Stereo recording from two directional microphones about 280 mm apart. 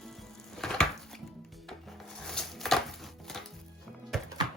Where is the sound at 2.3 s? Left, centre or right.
Centre.